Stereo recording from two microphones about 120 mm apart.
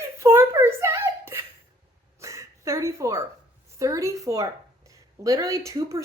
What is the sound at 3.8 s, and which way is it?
A woman's voice, 25° right (ahead or behind).